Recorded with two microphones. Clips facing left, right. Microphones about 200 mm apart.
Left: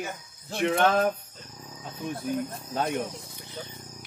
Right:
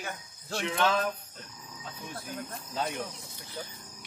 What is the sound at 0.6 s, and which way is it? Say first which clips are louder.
Speech: left 6 dB; 55° left (ahead or behind).